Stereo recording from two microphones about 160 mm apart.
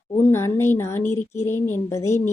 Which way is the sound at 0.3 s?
15° left (ahead or behind).